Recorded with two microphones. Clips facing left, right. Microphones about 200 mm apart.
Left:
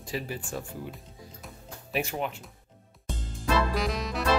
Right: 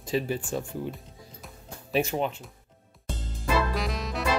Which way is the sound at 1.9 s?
25° right (ahead or behind).